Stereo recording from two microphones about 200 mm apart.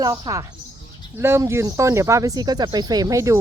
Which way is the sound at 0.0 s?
15° right (ahead or behind).